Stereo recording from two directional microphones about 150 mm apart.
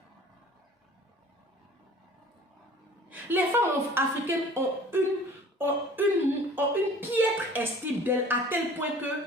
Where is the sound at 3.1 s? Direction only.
10° right (ahead or behind).